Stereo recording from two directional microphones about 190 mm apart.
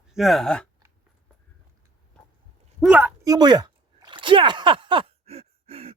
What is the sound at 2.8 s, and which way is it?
Speech, 5° right (ahead or behind).